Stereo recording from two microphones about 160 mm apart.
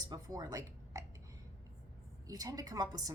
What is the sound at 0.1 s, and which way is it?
Speech, 20° right (ahead or behind).